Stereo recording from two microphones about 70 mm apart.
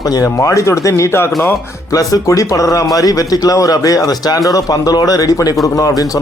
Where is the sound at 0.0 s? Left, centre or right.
Left.